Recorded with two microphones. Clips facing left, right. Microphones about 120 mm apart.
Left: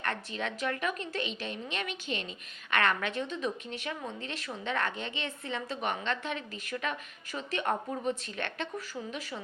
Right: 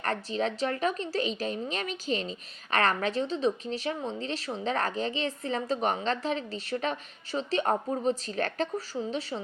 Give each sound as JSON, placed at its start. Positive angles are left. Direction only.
{"t": 0.0, "sound": "a woman's voice", "side_deg": -35}